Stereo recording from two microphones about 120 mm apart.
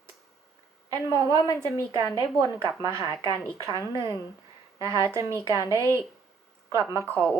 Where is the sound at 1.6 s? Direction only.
30° right (ahead or behind).